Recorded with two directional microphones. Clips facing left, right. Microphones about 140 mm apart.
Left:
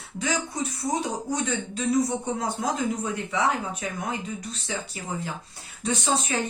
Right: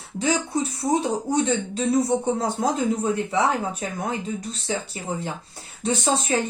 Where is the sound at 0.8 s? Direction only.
65° right (ahead or behind).